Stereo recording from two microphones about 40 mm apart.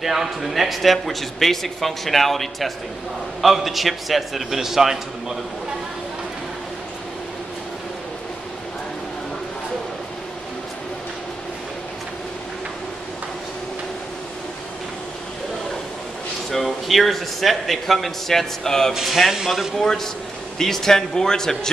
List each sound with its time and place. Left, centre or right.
0.0 s speech: centre
16.4 s speech: centre
19.0 s speech: centre
19.8 s speech: centre